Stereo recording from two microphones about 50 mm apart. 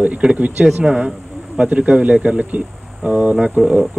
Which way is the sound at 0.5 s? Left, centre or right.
Centre.